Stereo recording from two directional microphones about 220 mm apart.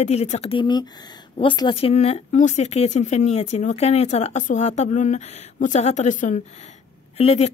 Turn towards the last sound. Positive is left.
turn(degrees=30)  # may be behind; listen again after turning